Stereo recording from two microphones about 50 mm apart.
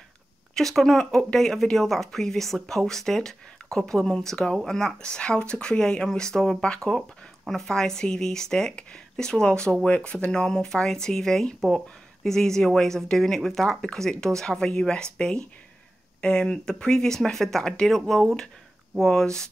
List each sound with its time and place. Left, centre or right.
0.6 s speech: centre
5.0 s speech: centre
6.9 s speech: centre